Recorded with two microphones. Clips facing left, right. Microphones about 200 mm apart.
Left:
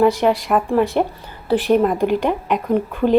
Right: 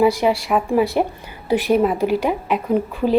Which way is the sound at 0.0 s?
10° right (ahead or behind).